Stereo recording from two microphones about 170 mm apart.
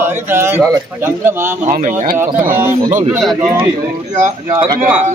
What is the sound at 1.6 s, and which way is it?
Speech, 50° right (ahead or behind).